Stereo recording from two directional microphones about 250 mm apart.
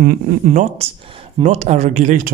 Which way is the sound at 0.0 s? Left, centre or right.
Right.